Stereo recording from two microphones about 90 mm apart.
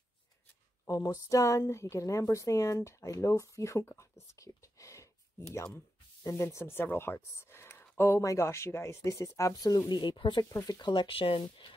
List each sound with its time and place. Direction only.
0.8 s a woman's voice: 40° left (ahead or behind); by 10.4 s 60° left (ahead or behind)
10.5 s speech: 45° left (ahead or behind); by 11.7 s 80° left